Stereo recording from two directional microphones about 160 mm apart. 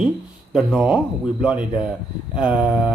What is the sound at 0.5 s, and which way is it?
Speech, 5° right (ahead or behind).